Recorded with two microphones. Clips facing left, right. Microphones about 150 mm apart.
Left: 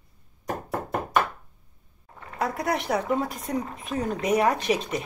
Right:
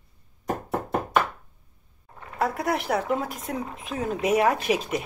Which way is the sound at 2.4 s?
Centre (ahead or behind).